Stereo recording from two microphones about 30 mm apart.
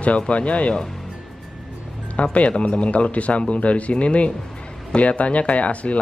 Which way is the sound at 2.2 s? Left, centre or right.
Left.